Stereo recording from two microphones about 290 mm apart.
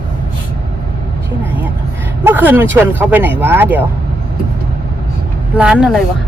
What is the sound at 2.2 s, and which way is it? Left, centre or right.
Speech, centre.